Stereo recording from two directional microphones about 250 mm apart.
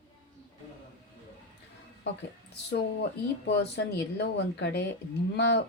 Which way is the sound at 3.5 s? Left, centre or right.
Left.